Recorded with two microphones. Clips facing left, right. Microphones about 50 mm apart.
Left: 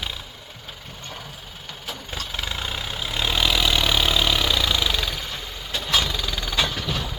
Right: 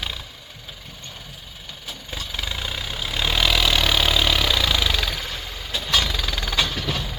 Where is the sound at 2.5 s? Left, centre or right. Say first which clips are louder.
Right 1 dB; centre.